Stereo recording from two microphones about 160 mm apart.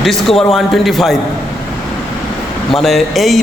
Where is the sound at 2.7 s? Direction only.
Centre (ahead or behind).